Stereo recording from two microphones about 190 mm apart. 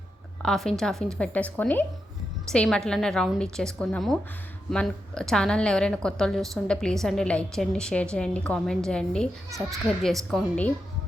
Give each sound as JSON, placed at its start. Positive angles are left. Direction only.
{"t": 0.4, "sound": "a woman's voice", "side_deg": 0}